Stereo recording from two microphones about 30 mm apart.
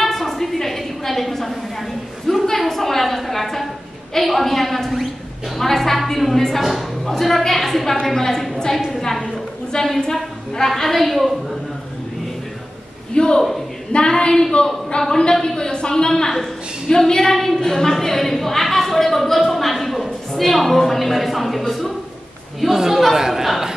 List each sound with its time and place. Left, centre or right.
0.0 s a sound: centre
4.2 s a woman's voice: centre
6.6 s a woman's voice: centre
7.1 s a woman's voice: centre
9.3 s a woman's voice: left
10.7 s a woman's voice: centre
13.1 s a man's voice: left; by 21.9 s centre
22.7 s speech: centre